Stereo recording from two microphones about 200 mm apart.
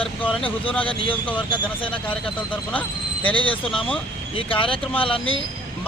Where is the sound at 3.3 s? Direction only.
25° left (ahead or behind).